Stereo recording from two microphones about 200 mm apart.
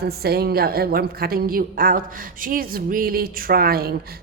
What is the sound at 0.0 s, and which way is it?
A woman's voice, 50° right (ahead or behind).